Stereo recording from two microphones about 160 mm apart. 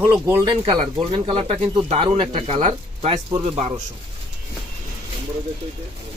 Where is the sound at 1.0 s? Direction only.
35° right (ahead or behind).